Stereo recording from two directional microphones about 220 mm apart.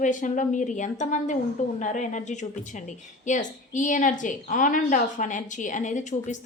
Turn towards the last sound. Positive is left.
turn(degrees=35)  # may be behind; listen again after turning